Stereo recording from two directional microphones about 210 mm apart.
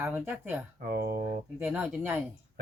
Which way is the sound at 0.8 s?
45° right (ahead or behind).